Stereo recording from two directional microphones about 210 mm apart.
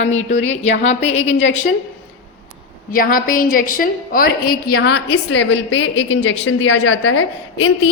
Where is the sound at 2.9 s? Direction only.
40° left (ahead or behind).